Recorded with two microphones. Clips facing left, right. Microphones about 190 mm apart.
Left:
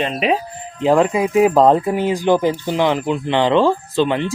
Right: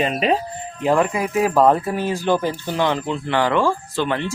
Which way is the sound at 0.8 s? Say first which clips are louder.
Left 4 dB; 20° left (ahead or behind).